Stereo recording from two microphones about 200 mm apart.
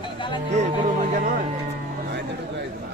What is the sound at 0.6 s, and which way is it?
Speech, 45° right (ahead or behind).